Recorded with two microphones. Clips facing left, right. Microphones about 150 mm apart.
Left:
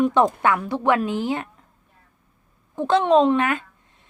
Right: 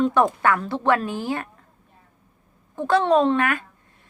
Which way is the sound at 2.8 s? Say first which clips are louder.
Left 1 dB; 20° left (ahead or behind).